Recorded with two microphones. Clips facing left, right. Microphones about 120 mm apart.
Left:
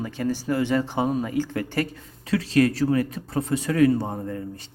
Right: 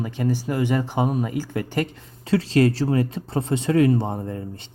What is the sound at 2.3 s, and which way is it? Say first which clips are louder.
Speech: right 2 dB; 30° right (ahead or behind).